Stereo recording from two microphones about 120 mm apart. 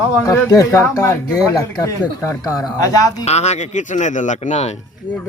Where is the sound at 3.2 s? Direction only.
65° left (ahead or behind).